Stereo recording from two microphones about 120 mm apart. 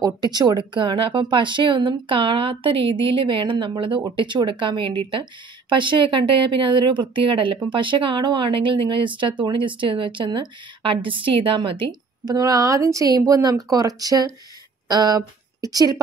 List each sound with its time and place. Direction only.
0.0 s speech: 35° right (ahead or behind)
12.4 s speech: 30° right (ahead or behind)